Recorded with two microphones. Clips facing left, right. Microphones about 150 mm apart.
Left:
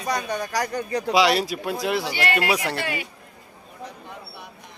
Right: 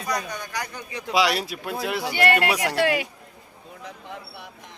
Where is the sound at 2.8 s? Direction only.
90° right.